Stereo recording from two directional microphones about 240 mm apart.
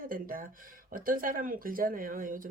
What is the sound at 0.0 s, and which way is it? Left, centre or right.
Speech, right.